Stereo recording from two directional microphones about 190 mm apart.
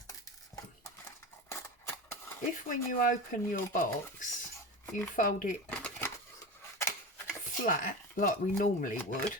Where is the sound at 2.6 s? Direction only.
45° left (ahead or behind).